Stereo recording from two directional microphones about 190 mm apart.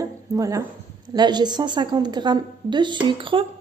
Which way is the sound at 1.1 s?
20° right (ahead or behind).